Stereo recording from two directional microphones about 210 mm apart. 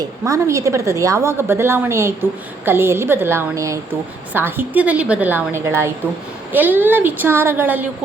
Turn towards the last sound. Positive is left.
turn(degrees=-10)  # may be behind; listen again after turning